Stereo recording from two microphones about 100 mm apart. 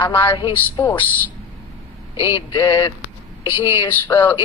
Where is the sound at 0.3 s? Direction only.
50° left (ahead or behind).